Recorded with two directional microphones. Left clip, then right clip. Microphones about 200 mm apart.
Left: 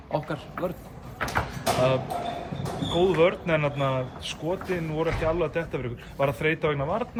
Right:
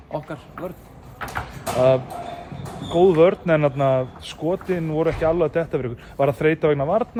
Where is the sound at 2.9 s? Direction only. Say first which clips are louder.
Right 7 dB; 45° right (ahead or behind).